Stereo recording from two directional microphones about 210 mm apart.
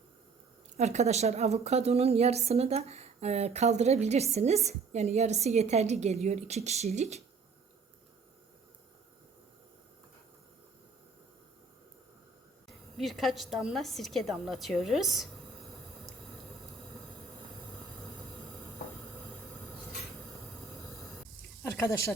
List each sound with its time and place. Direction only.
0.8 s a woman's voice: 30° right (ahead or behind)
12.6 s a woman's voice: centre (ahead or behind)
21.6 s speech: 15° left (ahead or behind)